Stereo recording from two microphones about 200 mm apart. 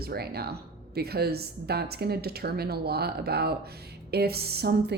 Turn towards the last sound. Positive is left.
turn(degrees=-55)  # may be behind; listen again after turning